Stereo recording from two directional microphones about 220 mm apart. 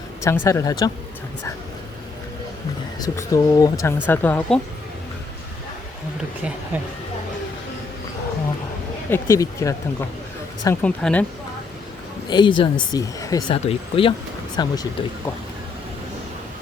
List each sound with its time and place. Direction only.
0.3 s speech: 15° left (ahead or behind)
3.2 s speech: 15° left (ahead or behind)
9.0 s speech: 10° left (ahead or behind)
12.3 s speech: 20° left (ahead or behind)